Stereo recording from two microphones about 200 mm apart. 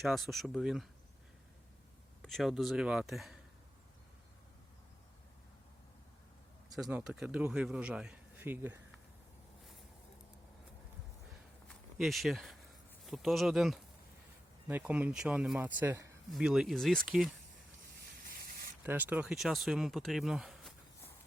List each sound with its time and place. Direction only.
0.0 s a man's voice: centre (ahead or behind)
2.2 s a man's voice: centre (ahead or behind)
6.7 s a man's voice: centre (ahead or behind)
11.7 s a man's voice: centre (ahead or behind)
18.3 s a sound: 45° right (ahead or behind)
18.8 s a man's voice: 10° right (ahead or behind)